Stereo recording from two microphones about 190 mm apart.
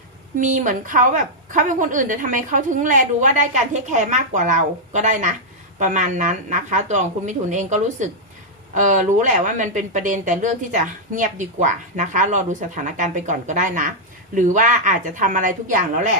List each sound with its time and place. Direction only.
0.3 s a woman's voice: 45° right (ahead or behind)